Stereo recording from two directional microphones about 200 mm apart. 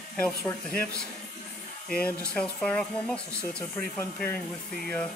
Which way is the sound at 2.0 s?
5° left (ahead or behind).